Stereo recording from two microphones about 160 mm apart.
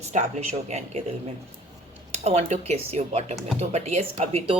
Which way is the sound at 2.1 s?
40° right (ahead or behind).